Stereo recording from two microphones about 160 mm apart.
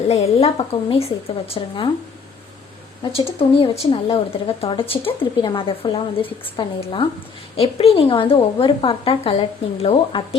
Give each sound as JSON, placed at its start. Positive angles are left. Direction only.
{"t": 0.1, "sound": "a woman's voice", "side_deg": 40}
{"t": 3.0, "sound": "a woman's voice", "side_deg": 35}